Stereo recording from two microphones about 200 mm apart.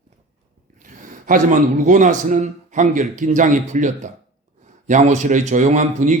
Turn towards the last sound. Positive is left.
turn(degrees=-35)  # may be behind; listen again after turning